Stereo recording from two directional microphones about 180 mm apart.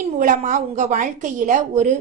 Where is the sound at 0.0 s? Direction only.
45° right (ahead or behind).